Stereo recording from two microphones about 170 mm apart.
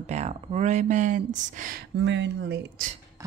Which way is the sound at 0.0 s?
40° right (ahead or behind).